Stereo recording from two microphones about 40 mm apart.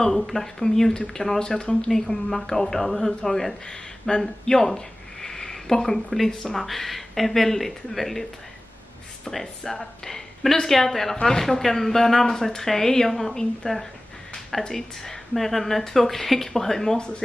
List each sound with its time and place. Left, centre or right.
0.0 s speech: centre
4.2 s a sound: centre
6.0 s speech: centre